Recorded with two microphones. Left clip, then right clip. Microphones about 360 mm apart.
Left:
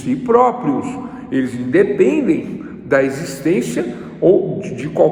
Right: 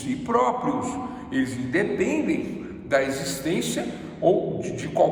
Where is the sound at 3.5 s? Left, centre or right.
Centre.